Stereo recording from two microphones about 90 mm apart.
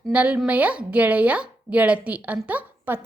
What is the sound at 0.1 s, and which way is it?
A woman's voice, 15° right (ahead or behind).